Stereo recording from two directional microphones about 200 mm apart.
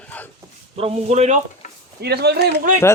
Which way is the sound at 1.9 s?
55° right (ahead or behind).